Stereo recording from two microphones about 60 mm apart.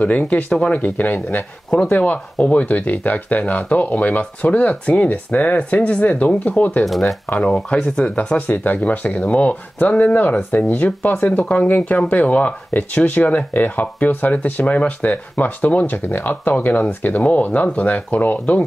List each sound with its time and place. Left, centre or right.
0.0 s speech: left
0.7 s speech: left
6.8 s speech: centre
7.7 s speech: centre